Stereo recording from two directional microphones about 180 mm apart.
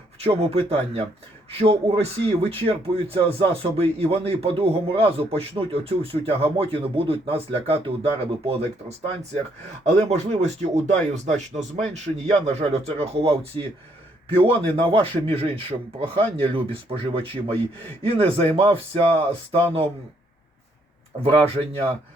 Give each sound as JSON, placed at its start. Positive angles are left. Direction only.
{"t": 0.2, "sound": "speech", "side_deg": -30}
{"t": 10.0, "sound": "speech", "side_deg": -35}
{"t": 21.2, "sound": "speech", "side_deg": -30}